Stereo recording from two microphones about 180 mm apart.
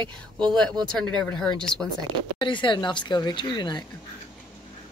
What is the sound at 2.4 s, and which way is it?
Speech, 25° left (ahead or behind).